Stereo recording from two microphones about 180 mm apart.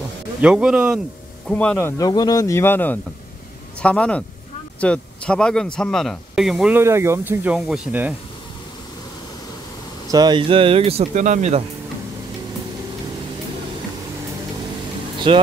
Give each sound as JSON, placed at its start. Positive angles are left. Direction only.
{"t": 0.4, "sound": "speech", "side_deg": -5}
{"t": 1.5, "sound": "speech", "side_deg": 5}
{"t": 10.1, "sound": "speech", "side_deg": -25}
{"t": 15.1, "sound": "vehicle", "side_deg": -25}